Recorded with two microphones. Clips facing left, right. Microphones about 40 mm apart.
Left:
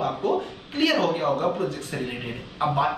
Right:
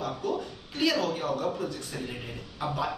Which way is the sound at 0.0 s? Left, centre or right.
Left.